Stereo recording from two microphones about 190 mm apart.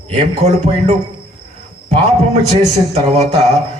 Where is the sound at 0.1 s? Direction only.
35° right (ahead or behind).